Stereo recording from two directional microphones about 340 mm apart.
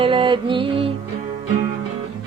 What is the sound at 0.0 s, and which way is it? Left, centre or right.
Mantra, centre.